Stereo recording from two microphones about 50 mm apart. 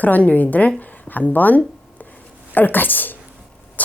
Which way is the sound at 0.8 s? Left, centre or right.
Left.